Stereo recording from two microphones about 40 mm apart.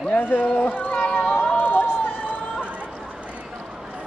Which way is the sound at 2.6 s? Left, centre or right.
Right.